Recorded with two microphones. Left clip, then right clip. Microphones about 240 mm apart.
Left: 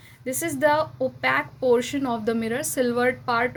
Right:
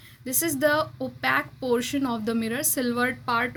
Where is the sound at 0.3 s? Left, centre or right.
Right.